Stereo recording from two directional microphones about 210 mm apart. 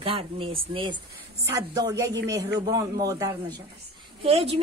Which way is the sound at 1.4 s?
15° right (ahead or behind).